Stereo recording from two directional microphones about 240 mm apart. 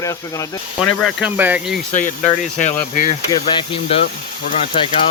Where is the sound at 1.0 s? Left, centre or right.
Centre.